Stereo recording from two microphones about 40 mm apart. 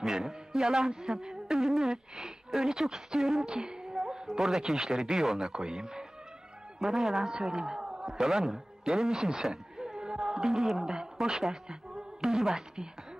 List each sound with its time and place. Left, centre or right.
0.0 s a man's voice: centre
9.8 s a sound: centre
10.4 s music: centre
10.9 s speech: centre